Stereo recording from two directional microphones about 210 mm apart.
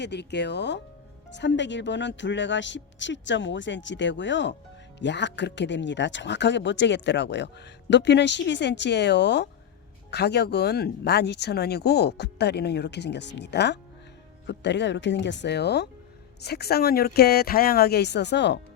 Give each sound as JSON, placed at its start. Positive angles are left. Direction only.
{"t": 0.0, "sound": "speech", "side_deg": 55}